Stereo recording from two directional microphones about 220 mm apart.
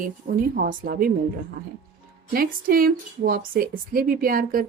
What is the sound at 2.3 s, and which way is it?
A woman's voice, 40° right (ahead or behind).